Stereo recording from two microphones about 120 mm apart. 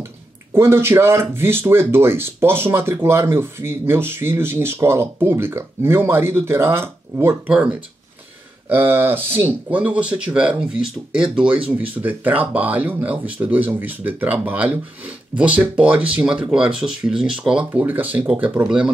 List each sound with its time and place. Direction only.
0.5 s speech: 20° right (ahead or behind)
8.6 s speech: 15° right (ahead or behind)